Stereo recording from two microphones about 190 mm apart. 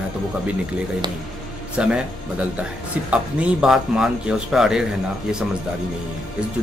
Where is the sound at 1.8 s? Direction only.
5° right (ahead or behind).